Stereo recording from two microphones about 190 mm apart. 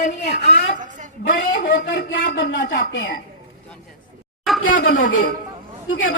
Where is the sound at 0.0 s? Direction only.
60° left (ahead or behind).